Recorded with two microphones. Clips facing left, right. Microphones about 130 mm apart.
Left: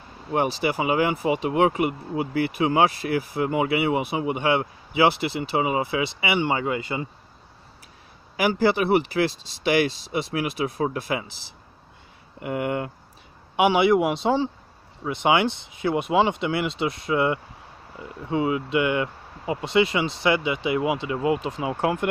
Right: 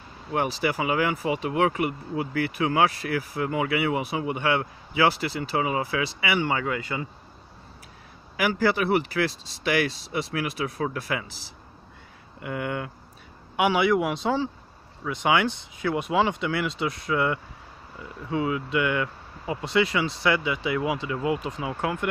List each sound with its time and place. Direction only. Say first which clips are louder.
0.3 s speech: left 2 dB; 25° left (ahead or behind)
8.4 s speech: left 3 dB; 25° left (ahead or behind)
12.4 s speech: left 4 dB; 30° left (ahead or behind)